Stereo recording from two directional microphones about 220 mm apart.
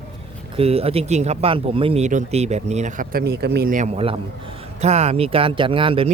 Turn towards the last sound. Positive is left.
turn(degrees=-25)  # may be behind; listen again after turning